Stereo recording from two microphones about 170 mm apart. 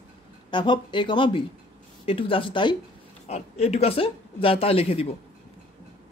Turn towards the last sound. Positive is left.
turn(degrees=35)  # may be behind; listen again after turning